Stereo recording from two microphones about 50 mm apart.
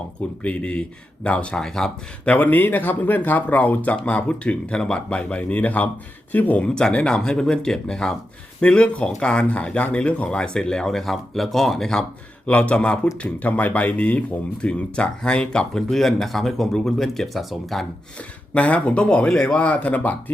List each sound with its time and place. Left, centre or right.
0.4 s speech: left
1.6 s speech: centre
2.2 s speech: left
6.6 s speech: centre
12.5 s speech: left; by 17.8 s centre
18.2 s speech: left